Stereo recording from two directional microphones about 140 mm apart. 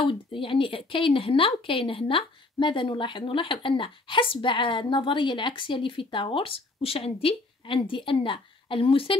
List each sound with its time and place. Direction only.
0.0 s a woman's voice: 40° left (ahead or behind)